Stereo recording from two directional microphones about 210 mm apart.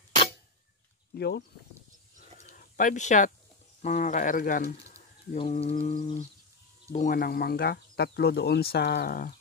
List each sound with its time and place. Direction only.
1.1 s speech: 50° left (ahead or behind)
2.4 s a sound: 40° left (ahead or behind)
3.8 s speech: 35° left (ahead or behind)
4.8 s bird: 30° left (ahead or behind)
6.9 s speech: 40° left (ahead or behind)